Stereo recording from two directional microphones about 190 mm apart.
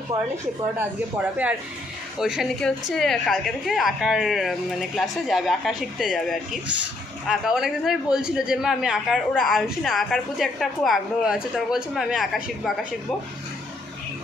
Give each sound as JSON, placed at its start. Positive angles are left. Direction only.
{"t": 0.1, "sound": "speech", "side_deg": -20}
{"t": 2.1, "sound": "a man's voice", "side_deg": -5}